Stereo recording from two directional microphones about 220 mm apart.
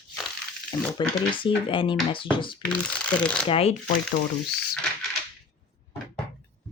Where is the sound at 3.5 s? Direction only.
25° left (ahead or behind).